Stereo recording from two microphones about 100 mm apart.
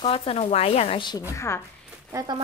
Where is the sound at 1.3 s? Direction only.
30° left (ahead or behind).